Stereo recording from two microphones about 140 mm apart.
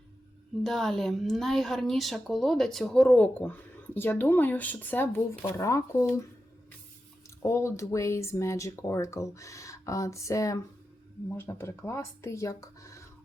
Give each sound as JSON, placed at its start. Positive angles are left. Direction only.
{"t": 0.6, "sound": "speech", "side_deg": 5}
{"t": 7.4, "sound": "speech", "side_deg": 20}